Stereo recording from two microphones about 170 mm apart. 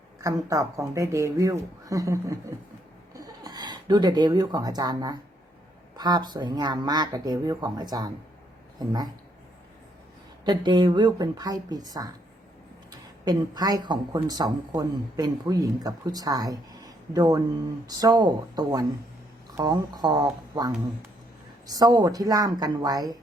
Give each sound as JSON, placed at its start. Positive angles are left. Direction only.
{"t": 0.2, "sound": "speech", "side_deg": -20}
{"t": 10.4, "sound": "speech", "side_deg": -25}
{"t": 21.7, "sound": "speech", "side_deg": -20}